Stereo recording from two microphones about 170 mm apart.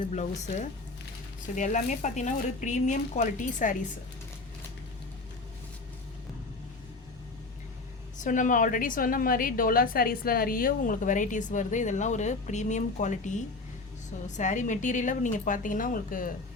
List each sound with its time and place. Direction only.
0.0 s a woman's voice: 45° left (ahead or behind)
8.2 s a woman's voice: 50° left (ahead or behind)